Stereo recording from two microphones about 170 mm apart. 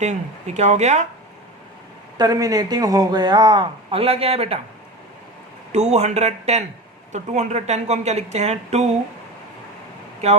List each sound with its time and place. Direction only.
0.0 s speech: 40° right (ahead or behind)
2.1 s a man's voice: 20° right (ahead or behind)
5.7 s speech: 40° right (ahead or behind)